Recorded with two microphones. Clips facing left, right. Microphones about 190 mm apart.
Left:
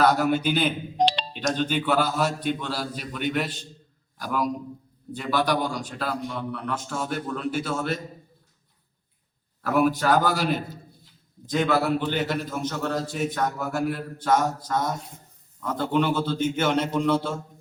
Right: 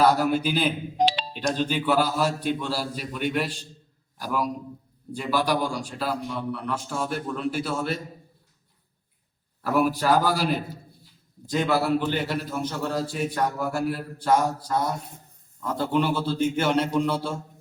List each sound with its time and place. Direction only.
0.0 s a man's voice: 5° right (ahead or behind)
9.6 s a man's voice: 5° right (ahead or behind)
11.5 s a man's voice: 10° right (ahead or behind)